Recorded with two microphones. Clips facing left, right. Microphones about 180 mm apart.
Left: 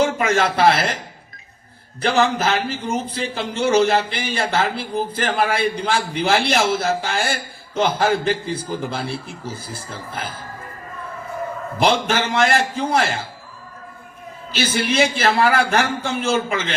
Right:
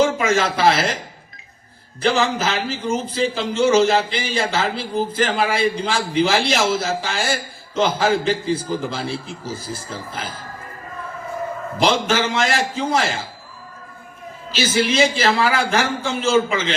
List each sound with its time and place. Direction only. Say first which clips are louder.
0.2 s speech: left 1 dB; 55° left (ahead or behind)
2.0 s speech: left 1 dB; 55° left (ahead or behind)
11.8 s speech: even; 55° left (ahead or behind)
14.5 s speech: right 1 dB; 55° left (ahead or behind)